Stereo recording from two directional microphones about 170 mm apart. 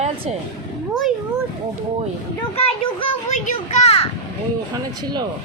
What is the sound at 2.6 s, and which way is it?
A child's voice, 35° left (ahead or behind).